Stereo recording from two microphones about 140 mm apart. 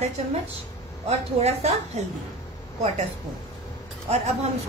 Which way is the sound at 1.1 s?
50° right (ahead or behind).